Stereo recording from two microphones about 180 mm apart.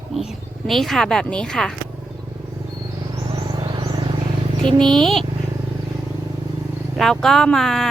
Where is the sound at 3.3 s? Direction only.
25° right (ahead or behind).